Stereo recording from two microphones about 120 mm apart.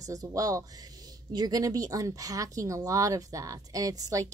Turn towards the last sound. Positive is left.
turn(degrees=-30)  # may be behind; listen again after turning